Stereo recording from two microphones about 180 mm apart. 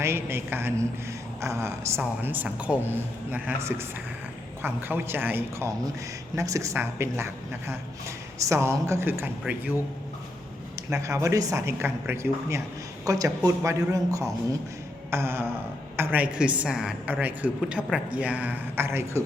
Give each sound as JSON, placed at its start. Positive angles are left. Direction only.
{"t": 0.0, "sound": "a man's voice", "side_deg": -15}
{"t": 8.4, "sound": "a man's voice", "side_deg": -15}
{"t": 10.8, "sound": "a man's voice", "side_deg": -15}